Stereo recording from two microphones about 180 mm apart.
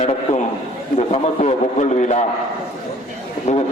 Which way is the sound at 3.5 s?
35° left (ahead or behind).